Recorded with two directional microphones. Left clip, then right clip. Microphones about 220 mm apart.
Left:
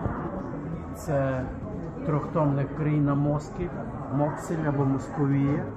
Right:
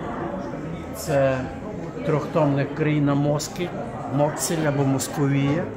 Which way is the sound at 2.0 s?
35° right (ahead or behind).